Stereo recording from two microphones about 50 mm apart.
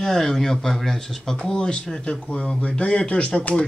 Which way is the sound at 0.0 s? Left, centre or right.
Centre.